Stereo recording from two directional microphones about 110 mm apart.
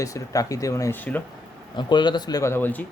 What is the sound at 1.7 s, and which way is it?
Speech, 45° left (ahead or behind).